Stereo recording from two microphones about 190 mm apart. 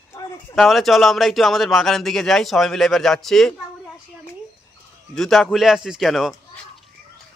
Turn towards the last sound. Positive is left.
turn(degrees=0)  # may be behind; listen again after turning